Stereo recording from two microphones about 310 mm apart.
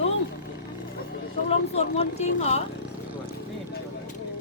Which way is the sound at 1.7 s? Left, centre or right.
Centre.